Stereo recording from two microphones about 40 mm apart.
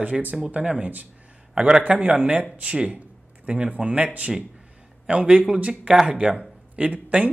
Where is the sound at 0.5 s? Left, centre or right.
Right.